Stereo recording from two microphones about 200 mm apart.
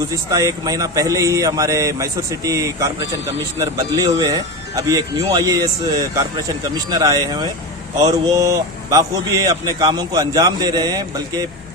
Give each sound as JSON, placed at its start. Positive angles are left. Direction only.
{"t": 0.1, "sound": "a man's voice", "side_deg": -15}